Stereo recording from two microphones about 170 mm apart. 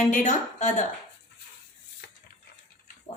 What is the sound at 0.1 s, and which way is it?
Speech, 50° left (ahead or behind).